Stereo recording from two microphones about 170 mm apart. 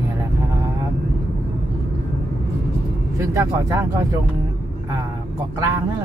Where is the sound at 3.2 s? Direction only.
15° right (ahead or behind).